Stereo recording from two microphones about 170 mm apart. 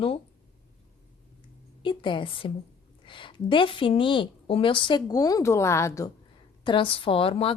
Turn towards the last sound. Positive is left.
turn(degrees=35)  # may be behind; listen again after turning